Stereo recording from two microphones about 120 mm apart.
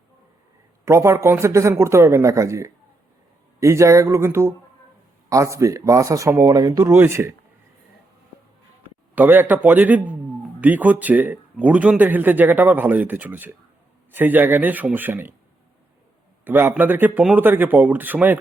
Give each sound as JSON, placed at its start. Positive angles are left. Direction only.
{"t": 0.9, "sound": "speech", "side_deg": -25}
{"t": 9.1, "sound": "speech", "side_deg": -15}
{"t": 16.4, "sound": "speech", "side_deg": -15}